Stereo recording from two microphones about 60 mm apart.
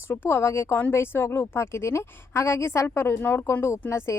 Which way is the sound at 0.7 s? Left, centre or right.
Left.